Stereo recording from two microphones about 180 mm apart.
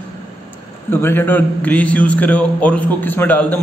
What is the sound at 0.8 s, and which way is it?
A man's voice, 10° left (ahead or behind).